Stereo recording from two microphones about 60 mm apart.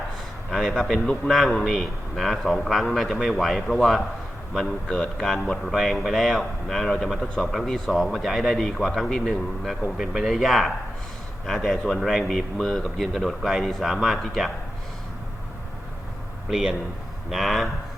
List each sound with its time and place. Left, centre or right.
0.5 s speech: centre
0.9 s a man's voice: centre
1.3 s a man's voice: centre
10.0 s speech: centre
16.5 s speech: centre